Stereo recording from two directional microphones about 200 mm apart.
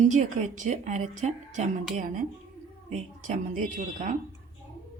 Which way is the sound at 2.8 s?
40° right (ahead or behind).